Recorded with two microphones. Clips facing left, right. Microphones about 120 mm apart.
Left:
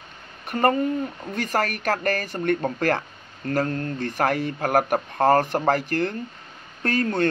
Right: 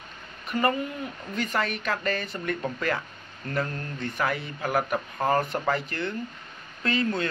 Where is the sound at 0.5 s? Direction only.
45° left (ahead or behind); by 6.1 s 65° left (ahead or behind).